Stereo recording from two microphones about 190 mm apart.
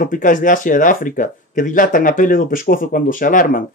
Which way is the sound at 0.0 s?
45° left (ahead or behind).